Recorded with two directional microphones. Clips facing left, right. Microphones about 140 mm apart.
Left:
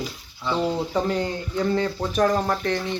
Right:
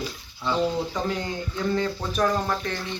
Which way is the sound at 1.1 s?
35° left (ahead or behind).